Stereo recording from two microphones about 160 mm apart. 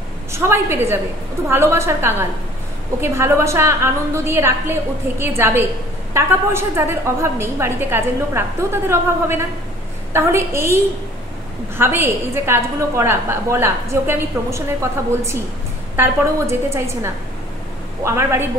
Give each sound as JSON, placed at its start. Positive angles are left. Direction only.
{"t": 0.3, "sound": "a woman's voice", "side_deg": -15}